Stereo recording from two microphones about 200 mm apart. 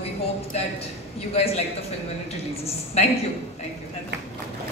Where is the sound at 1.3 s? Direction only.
30° left (ahead or behind).